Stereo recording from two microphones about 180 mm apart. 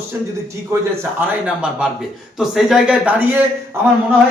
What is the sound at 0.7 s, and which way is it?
Speech, 15° right (ahead or behind).